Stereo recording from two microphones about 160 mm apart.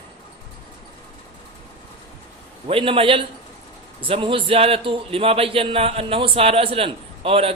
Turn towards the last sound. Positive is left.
turn(degrees=-35)  # may be behind; listen again after turning